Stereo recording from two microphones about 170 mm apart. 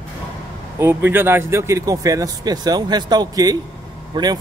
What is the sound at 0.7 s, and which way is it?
Speech, 10° right (ahead or behind).